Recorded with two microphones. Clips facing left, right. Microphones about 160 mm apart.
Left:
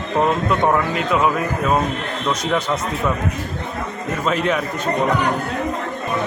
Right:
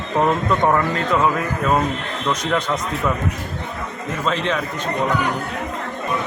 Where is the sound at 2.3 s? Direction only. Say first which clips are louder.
Even; 10° left (ahead or behind).